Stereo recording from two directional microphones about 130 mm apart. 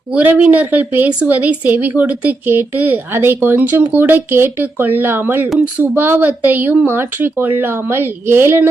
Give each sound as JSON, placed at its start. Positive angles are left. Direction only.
{"t": 0.1, "sound": "speech", "side_deg": -10}